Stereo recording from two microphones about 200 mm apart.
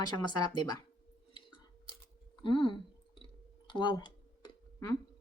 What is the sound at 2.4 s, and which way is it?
Speech, 25° left (ahead or behind).